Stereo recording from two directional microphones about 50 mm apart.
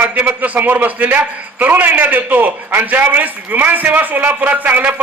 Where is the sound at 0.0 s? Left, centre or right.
Right.